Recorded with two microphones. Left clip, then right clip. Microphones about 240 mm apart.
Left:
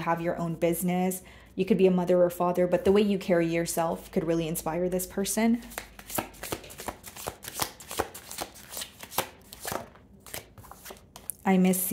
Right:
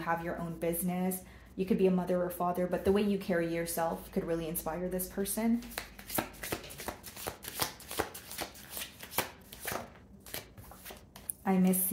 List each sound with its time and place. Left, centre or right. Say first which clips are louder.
0.0 s speech: left 6 dB; left
5.8 s shuffling cards: left 3 dB; left
10.3 s a sound: left 3 dB; left